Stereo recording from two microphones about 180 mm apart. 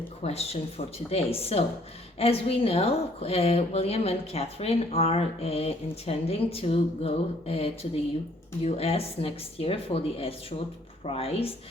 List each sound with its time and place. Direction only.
0.2 s speech: 35° left (ahead or behind)